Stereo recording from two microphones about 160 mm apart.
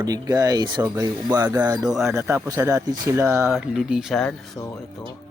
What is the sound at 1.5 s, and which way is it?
Speech, 10° right (ahead or behind).